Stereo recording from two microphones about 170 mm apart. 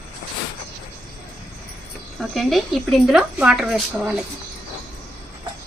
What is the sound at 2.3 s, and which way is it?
Speech, centre (ahead or behind).